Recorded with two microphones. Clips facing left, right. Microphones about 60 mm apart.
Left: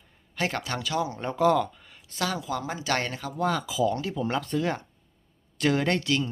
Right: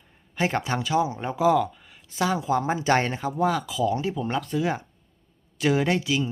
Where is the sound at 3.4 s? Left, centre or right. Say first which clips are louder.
Right 1 dB; centre.